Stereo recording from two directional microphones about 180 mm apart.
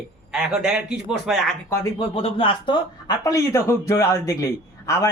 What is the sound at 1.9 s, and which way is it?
A man's voice, 30° left (ahead or behind).